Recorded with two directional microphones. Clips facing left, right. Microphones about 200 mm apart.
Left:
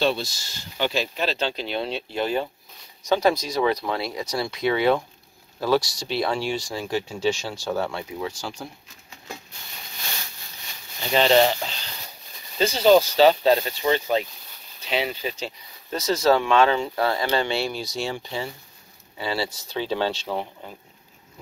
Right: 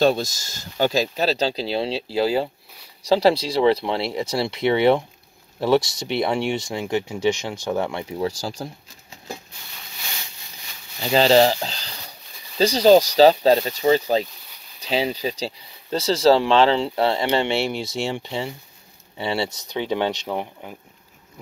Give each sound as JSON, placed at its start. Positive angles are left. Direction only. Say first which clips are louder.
{"t": 0.0, "sound": "speech", "louder": "right 5 dB", "side_deg": -45}
{"t": 8.2, "sound": "speech", "louder": "right 8 dB", "side_deg": -35}
{"t": 11.0, "sound": "speech", "louder": "right 3 dB", "side_deg": -35}